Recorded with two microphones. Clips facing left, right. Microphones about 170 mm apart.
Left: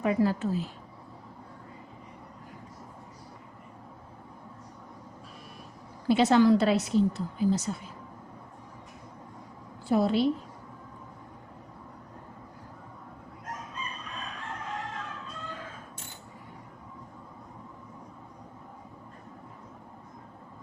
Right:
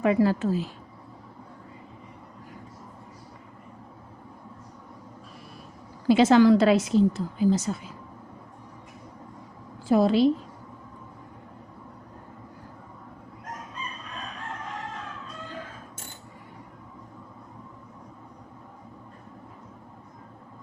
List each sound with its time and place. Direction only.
0.0 s a woman's voice: 90° right
6.1 s a woman's voice: 90° right
9.9 s a woman's voice: 90° right